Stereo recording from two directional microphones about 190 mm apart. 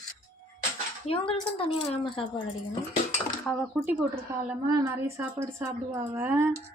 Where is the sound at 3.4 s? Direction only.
Centre (ahead or behind).